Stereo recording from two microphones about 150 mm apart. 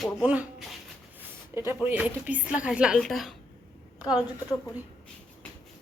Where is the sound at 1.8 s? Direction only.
10° right (ahead or behind).